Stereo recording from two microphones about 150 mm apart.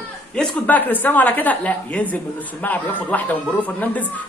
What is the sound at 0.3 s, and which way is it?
A man's voice, 10° left (ahead or behind).